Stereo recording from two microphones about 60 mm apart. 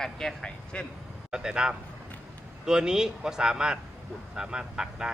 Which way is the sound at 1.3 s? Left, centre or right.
Centre.